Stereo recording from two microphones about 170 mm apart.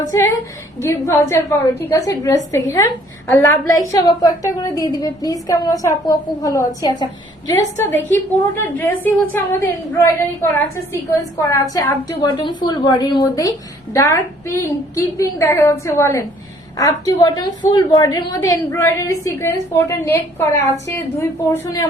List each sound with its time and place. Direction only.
0.0 s a woman's voice: 20° left (ahead or behind)
11.4 s a woman's voice: 20° left (ahead or behind)